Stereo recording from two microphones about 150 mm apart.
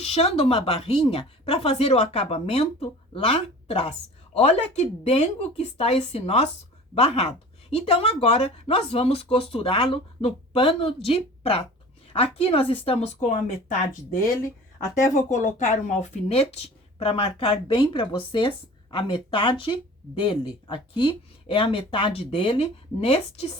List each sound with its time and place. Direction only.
0.0 s speech: 45° left (ahead or behind)
15.1 s speech: 55° left (ahead or behind)